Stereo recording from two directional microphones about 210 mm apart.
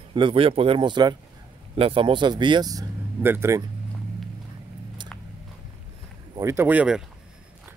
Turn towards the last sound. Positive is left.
turn(degrees=-5)  # may be behind; listen again after turning